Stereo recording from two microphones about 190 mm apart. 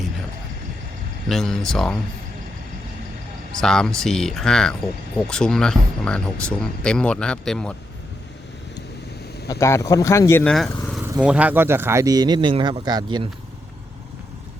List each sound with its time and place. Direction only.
1.3 s speech: centre (ahead or behind)
3.6 s speech: 5° left (ahead or behind)
9.5 s speech: 15° left (ahead or behind)
10.5 s speech: centre (ahead or behind); by 13.2 s 25° right (ahead or behind)